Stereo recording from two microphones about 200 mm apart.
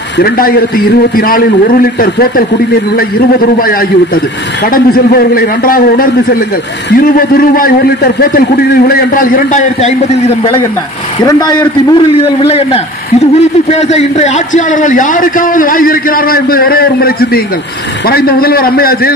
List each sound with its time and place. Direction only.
0.2 s a man's voice: 45° left (ahead or behind)
3.5 s a man's voice: 45° left (ahead or behind)